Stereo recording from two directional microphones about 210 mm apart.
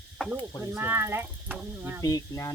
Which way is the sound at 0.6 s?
10° right (ahead or behind).